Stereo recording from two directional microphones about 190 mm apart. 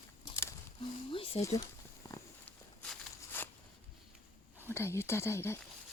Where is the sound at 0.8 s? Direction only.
30° left (ahead or behind).